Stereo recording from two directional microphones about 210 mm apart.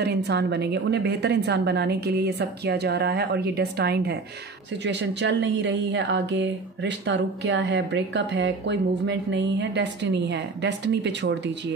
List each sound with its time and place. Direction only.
0.0 s a woman's voice: 50° right (ahead or behind)